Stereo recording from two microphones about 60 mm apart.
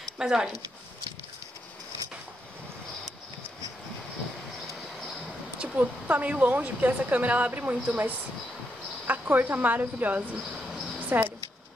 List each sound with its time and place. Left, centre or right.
0.2 s speech: centre
5.6 s speech: right
11.1 s a sound: right